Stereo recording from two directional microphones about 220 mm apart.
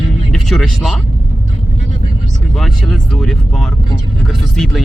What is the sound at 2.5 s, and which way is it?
Speech, centre (ahead or behind).